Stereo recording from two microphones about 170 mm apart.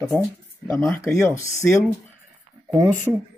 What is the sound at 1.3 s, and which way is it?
Speech, 15° left (ahead or behind).